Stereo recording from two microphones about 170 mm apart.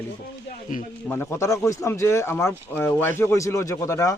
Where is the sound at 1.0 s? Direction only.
10° left (ahead or behind).